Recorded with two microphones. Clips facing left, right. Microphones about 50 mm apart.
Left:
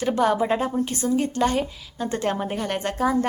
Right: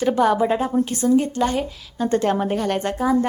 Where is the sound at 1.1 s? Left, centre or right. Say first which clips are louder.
Right 2 dB; left.